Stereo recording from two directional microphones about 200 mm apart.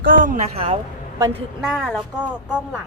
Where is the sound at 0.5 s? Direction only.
25° right (ahead or behind).